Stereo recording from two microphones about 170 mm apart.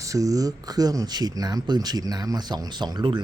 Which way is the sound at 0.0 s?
20° right (ahead or behind).